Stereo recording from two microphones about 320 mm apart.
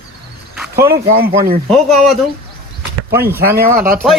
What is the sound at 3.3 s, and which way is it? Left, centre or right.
Speech, right.